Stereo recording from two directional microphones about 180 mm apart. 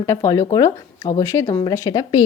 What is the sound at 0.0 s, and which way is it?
A woman's voice, 15° left (ahead or behind).